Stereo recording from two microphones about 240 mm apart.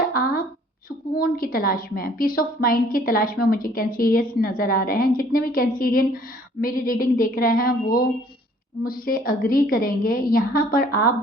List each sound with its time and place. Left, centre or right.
0.9 s a woman's voice: left